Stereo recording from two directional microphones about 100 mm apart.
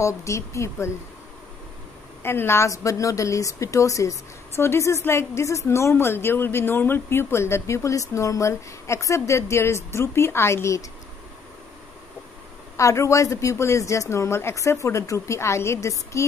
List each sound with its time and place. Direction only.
0.0 s a woman's voice: 30° left (ahead or behind)
2.2 s a woman's voice: 25° left (ahead or behind)
12.7 s speech: 30° left (ahead or behind)